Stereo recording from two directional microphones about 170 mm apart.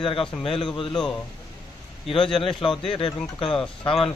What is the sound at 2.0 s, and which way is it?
A man's voice, 30° left (ahead or behind).